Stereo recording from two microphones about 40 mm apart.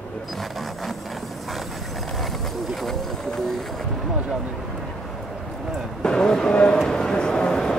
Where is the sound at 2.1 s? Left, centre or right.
Centre.